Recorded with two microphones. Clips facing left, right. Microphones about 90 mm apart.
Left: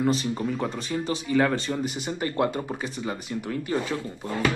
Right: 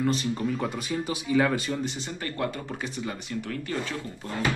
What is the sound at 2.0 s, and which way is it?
Speech, 15° left (ahead or behind).